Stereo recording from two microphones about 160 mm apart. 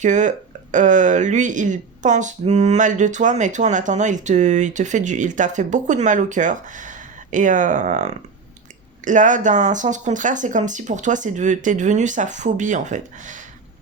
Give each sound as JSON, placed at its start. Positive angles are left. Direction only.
{"t": 0.0, "sound": "speech", "side_deg": -50}